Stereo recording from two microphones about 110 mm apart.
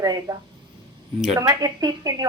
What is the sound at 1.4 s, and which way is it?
Speech, 35° right (ahead or behind).